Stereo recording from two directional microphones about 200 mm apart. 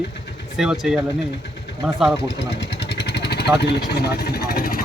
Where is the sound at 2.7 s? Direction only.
55° left (ahead or behind).